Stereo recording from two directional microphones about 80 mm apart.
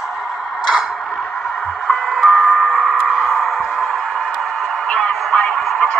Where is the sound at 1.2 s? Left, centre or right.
Centre.